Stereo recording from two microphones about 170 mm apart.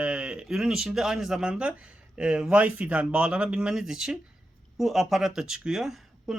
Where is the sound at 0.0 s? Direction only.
5° right (ahead or behind).